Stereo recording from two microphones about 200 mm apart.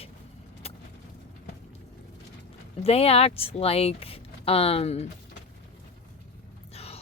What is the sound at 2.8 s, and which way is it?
Speech, 30° left (ahead or behind).